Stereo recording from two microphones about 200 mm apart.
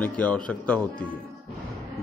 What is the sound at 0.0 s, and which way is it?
A man's voice, 5° left (ahead or behind).